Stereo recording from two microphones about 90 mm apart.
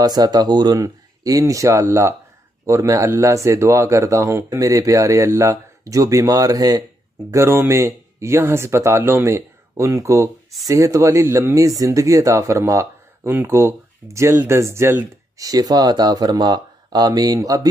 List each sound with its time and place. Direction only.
0.0 s speech: 50° right (ahead or behind)
7.2 s speech: 25° right (ahead or behind); by 17.6 s 40° right (ahead or behind)